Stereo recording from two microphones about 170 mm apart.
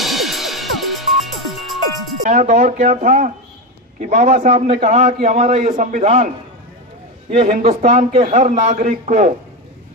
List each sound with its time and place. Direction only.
0.0 s music: centre (ahead or behind)
2.2 s a man's voice: 55° right (ahead or behind)
7.2 s a man's voice: 35° right (ahead or behind)